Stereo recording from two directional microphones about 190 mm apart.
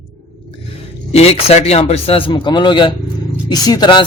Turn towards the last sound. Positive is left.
turn(degrees=20)  # may be behind; listen again after turning